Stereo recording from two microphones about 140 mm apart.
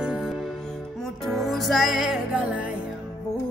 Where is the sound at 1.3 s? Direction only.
Centre (ahead or behind).